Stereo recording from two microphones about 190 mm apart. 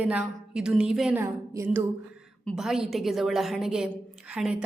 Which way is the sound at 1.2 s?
15° right (ahead or behind).